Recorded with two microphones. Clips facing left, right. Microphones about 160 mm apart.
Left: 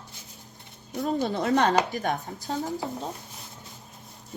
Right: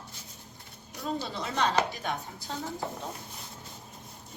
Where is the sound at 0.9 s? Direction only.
50° left (ahead or behind).